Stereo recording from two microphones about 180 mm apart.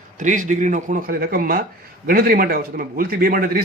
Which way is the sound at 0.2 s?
45° right (ahead or behind).